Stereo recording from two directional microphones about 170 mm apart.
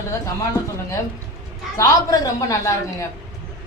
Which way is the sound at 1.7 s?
20° left (ahead or behind).